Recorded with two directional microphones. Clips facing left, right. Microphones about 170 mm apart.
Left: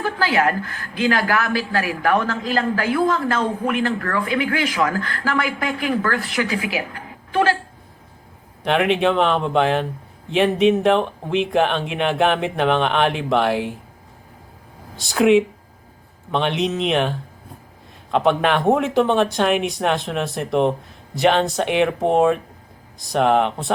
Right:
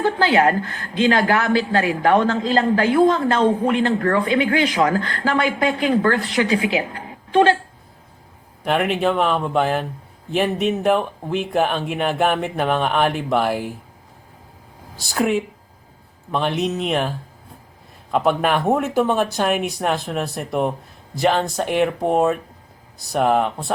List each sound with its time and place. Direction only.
0.0 s a woman's voice: 25° right (ahead or behind)
8.6 s speech: 5° right (ahead or behind)
14.9 s speech: centre (ahead or behind)
16.3 s speech: centre (ahead or behind)